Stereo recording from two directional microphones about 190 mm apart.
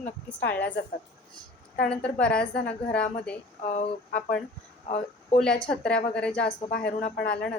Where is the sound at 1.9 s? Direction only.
5° left (ahead or behind).